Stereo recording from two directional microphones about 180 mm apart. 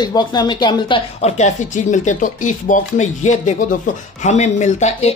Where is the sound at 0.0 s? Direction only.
25° left (ahead or behind).